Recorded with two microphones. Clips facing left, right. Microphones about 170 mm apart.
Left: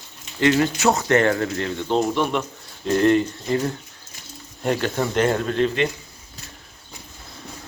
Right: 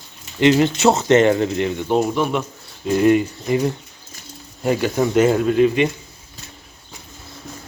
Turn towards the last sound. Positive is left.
turn(degrees=-10)  # may be behind; listen again after turning